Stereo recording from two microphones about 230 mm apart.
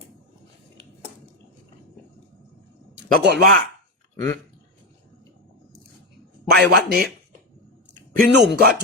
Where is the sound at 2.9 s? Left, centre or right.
Right.